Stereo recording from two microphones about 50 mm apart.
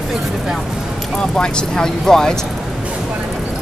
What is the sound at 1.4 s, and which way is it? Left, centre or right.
Speech, centre.